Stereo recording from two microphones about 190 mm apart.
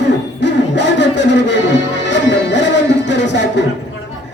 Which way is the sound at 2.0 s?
70° left (ahead or behind).